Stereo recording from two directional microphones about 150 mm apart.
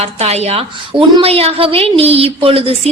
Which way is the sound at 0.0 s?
45° right (ahead or behind).